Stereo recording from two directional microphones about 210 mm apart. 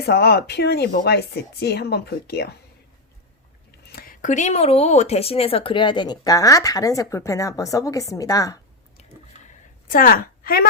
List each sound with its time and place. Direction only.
0.0 s speech: 50° left (ahead or behind)
3.8 s speech: 45° left (ahead or behind); by 8.5 s 15° left (ahead or behind)
9.8 s a woman's voice: 40° left (ahead or behind)